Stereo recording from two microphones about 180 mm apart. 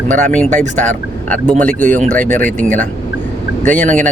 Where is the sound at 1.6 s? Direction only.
10° left (ahead or behind).